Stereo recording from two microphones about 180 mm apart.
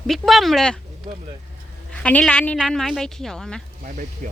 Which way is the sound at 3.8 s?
50° right (ahead or behind).